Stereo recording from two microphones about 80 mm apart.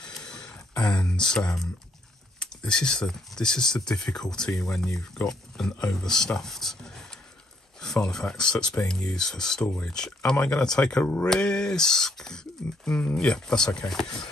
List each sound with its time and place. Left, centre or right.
0.0 s a sound: centre
1.3 s speech: centre
11.0 s speech: centre